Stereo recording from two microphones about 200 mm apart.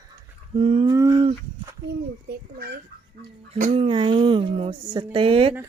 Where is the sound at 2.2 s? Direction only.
50° right (ahead or behind).